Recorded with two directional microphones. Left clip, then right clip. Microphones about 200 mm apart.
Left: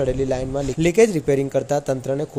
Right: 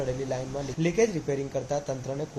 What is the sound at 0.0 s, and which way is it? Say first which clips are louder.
A man's voice: left 9 dB; 55° left (ahead or behind).